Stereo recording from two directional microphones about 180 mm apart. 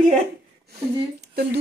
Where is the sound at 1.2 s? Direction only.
65° right (ahead or behind).